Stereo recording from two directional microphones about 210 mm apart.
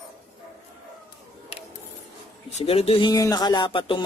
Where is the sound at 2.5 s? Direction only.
30° left (ahead or behind).